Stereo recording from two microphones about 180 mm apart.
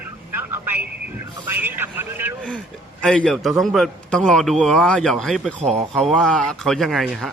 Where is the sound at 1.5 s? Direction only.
10° right (ahead or behind).